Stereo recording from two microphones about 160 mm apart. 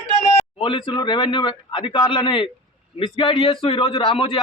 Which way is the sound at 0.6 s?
30° left (ahead or behind).